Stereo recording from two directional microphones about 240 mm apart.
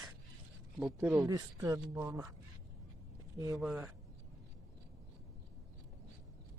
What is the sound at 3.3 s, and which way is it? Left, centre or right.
Speech, centre.